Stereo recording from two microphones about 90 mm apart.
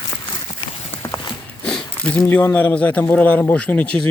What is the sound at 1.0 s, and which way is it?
Clip-clop, 30° left (ahead or behind).